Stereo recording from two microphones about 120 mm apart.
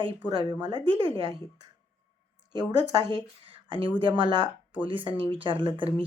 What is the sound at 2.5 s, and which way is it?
A woman's voice, 35° right (ahead or behind).